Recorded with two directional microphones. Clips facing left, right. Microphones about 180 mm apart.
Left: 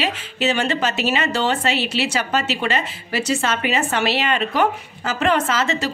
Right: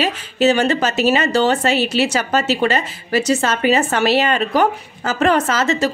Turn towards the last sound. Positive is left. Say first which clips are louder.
# right 4 dB
turn(degrees=-40)  # may be behind; listen again after turning